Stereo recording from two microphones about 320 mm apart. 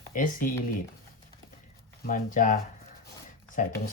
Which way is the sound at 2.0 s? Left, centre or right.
Left.